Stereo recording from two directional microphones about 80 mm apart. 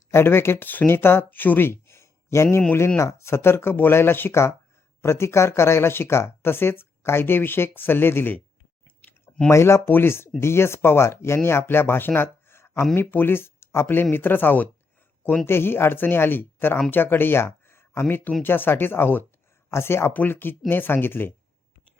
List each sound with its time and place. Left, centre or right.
0.1 s speech: left
9.5 s speech: left